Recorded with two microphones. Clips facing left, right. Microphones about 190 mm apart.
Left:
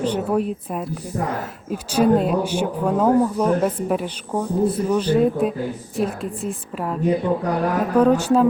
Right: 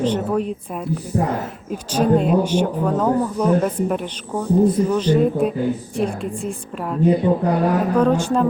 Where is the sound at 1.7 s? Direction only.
5° left (ahead or behind).